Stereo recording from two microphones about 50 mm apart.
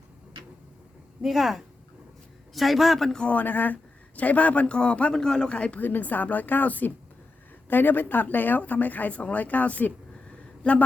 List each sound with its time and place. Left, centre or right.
1.2 s a man's voice: centre
3.2 s speech: left
5.1 s speech: centre
5.8 s speech: left
10.6 s a sound: left